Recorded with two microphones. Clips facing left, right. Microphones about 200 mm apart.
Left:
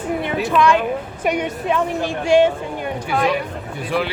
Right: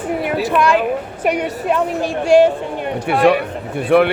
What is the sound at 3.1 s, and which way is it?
Speech, 65° right (ahead or behind).